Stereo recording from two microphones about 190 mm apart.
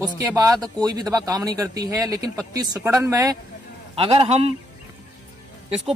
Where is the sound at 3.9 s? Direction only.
30° right (ahead or behind).